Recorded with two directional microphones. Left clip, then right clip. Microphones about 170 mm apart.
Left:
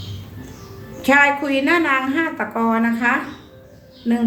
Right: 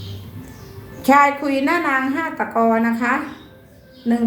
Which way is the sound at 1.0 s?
15° left (ahead or behind).